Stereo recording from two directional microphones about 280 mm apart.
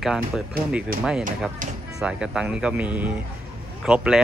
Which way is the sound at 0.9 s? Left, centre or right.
Right.